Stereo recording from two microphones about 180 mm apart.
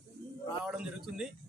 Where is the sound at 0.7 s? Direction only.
5° right (ahead or behind).